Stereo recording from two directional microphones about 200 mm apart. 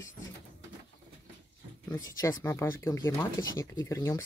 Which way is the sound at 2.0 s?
15° left (ahead or behind).